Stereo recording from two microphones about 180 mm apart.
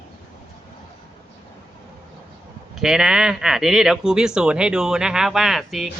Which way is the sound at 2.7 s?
5° right (ahead or behind).